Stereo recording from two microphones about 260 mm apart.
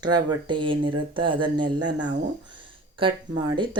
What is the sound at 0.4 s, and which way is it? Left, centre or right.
Speech, centre.